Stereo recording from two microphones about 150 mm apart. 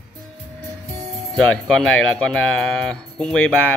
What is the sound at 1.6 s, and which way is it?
Speech, 5° left (ahead or behind).